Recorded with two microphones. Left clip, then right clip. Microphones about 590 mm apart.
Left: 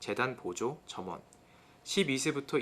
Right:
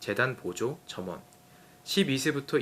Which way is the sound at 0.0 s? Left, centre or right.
Right.